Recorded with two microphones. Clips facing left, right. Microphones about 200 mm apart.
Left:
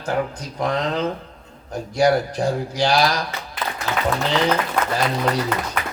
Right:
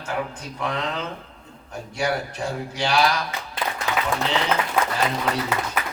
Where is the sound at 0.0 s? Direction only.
35° left (ahead or behind).